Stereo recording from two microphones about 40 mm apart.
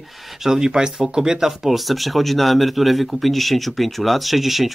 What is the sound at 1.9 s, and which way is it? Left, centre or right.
A man's voice, centre.